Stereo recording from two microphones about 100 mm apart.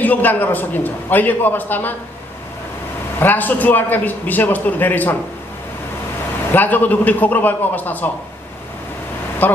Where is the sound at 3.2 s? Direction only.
20° left (ahead or behind).